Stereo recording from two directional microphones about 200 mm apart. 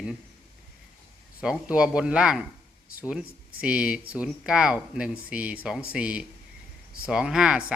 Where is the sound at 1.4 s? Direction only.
5° right (ahead or behind).